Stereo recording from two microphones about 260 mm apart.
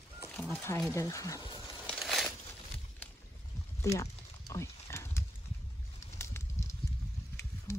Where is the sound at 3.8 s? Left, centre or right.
Centre.